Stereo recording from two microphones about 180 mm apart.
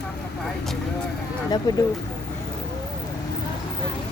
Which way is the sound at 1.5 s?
25° left (ahead or behind).